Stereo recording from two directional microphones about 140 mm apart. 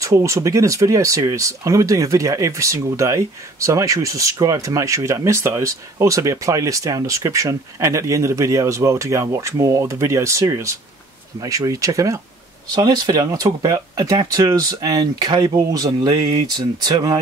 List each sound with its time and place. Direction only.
0.0 s speech: 20° right (ahead or behind)